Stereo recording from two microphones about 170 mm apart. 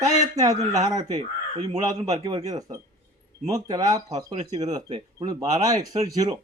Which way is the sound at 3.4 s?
20° right (ahead or behind).